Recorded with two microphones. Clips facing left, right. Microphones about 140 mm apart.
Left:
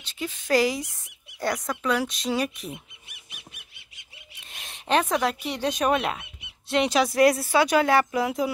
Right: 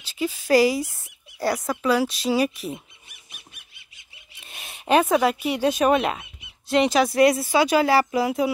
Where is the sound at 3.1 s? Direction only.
80° left.